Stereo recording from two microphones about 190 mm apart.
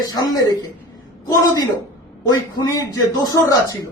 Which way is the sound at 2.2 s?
20° left (ahead or behind).